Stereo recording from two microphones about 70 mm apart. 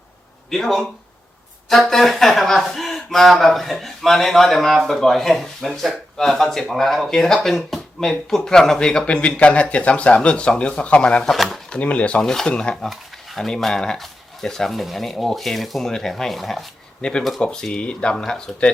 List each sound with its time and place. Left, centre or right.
0.5 s speech: centre
11.3 s speech: centre
11.7 s speech: centre
12.2 s speech: centre
17.0 s speech: centre